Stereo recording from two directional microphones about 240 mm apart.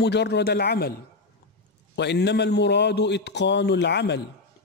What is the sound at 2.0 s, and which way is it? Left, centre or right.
A man's voice, left.